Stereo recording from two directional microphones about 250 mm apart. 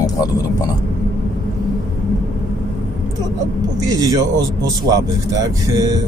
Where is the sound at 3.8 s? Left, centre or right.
Centre.